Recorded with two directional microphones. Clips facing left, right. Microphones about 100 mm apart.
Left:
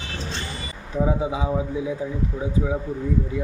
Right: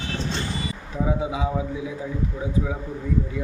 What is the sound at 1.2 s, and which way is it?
Speech, 30° left (ahead or behind).